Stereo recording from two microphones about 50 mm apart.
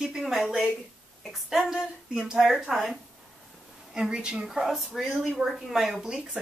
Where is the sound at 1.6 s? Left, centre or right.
Centre.